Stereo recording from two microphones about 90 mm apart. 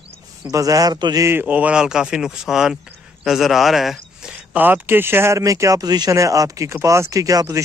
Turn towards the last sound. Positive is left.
turn(degrees=-40)  # may be behind; listen again after turning